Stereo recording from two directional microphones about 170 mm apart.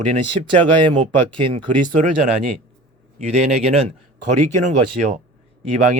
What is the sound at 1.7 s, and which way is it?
Speech, 50° right (ahead or behind).